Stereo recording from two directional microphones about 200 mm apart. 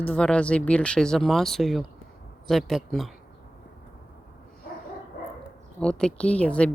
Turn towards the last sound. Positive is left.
turn(degrees=5)  # may be behind; listen again after turning